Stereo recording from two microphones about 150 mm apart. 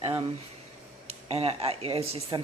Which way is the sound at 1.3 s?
40° right (ahead or behind).